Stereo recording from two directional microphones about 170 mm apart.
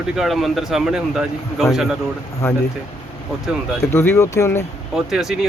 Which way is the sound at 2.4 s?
15° left (ahead or behind).